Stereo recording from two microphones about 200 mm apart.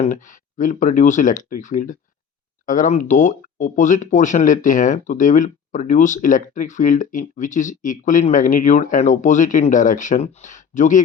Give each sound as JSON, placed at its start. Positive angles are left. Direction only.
{"t": 0.0, "sound": "speech", "side_deg": 40}